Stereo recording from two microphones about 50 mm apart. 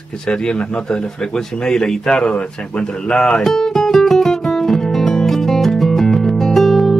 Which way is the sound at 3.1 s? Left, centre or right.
Centre.